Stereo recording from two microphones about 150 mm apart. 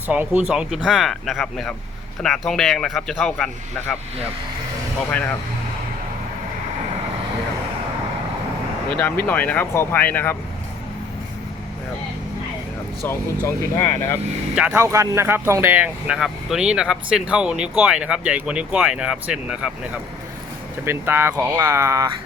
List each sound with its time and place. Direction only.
0.1 s a man's voice: 10° right (ahead or behind)
9.2 s speech: 10° left (ahead or behind)
13.1 s speech: 15° left (ahead or behind)
14.5 s speech: 10° right (ahead or behind)
20.8 s speech: 15° right (ahead or behind)